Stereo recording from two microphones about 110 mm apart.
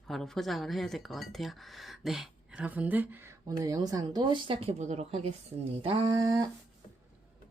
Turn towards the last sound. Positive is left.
turn(degrees=-40)  # may be behind; listen again after turning